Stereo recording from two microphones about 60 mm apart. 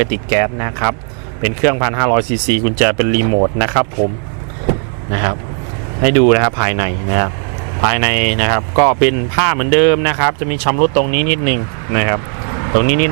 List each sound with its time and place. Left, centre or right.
0.0 s speech: right
3.3 s speech: right
4.7 s vehicle: right
6.0 s speech: right